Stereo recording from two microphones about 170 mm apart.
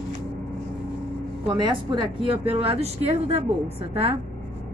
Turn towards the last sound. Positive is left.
turn(degrees=-35)  # may be behind; listen again after turning